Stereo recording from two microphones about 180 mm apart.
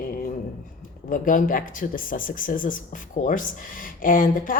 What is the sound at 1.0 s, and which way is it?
Speech, 45° left (ahead or behind).